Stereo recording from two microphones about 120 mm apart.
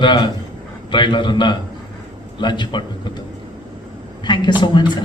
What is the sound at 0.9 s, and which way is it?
A man's voice, 40° left (ahead or behind).